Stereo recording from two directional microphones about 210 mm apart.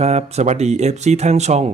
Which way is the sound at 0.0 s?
30° right (ahead or behind).